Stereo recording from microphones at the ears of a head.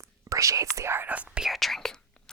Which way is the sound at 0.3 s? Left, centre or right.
Right.